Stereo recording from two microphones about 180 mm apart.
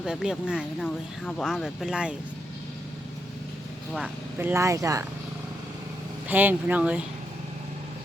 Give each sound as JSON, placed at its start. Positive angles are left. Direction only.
{"t": 0.0, "sound": "speech", "side_deg": -5}
{"t": 3.9, "sound": "speech", "side_deg": -10}
{"t": 6.2, "sound": "speech", "side_deg": -10}